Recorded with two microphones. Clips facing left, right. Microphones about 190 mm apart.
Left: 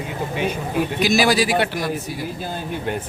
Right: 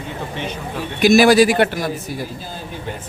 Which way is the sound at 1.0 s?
50° right (ahead or behind).